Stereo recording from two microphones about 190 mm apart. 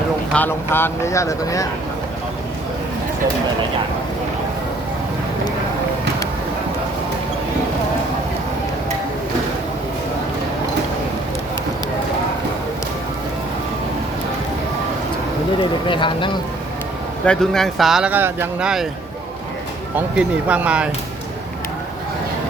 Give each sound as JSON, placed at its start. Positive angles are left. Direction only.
{"t": 0.3, "sound": "speech", "side_deg": 10}
{"t": 15.9, "sound": "speech", "side_deg": 25}
{"t": 17.2, "sound": "speech", "side_deg": 0}
{"t": 20.0, "sound": "speech", "side_deg": -10}